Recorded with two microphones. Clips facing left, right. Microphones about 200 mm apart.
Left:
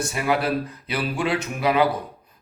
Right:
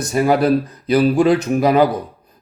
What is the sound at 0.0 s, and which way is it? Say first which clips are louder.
A man's voice: right 8 dB; 40° right (ahead or behind).